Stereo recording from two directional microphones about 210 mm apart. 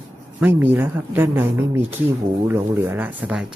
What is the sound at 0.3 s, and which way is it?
Speech, 10° right (ahead or behind).